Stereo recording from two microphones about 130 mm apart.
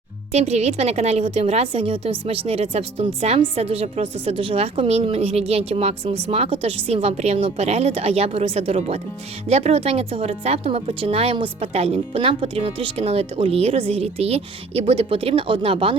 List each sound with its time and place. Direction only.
0.3 s a woman's voice: 55° right (ahead or behind)